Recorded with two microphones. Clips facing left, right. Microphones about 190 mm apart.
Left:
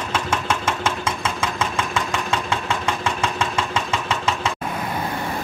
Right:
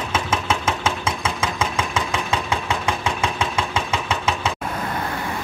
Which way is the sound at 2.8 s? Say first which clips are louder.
Even; centre (ahead or behind).